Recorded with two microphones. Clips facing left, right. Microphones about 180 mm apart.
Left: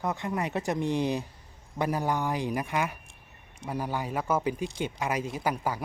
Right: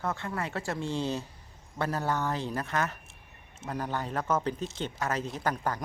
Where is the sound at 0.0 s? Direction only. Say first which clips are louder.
Left 3 dB; 15° left (ahead or behind).